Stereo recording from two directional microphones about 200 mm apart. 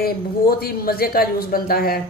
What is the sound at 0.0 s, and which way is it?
Speech, 50° left (ahead or behind).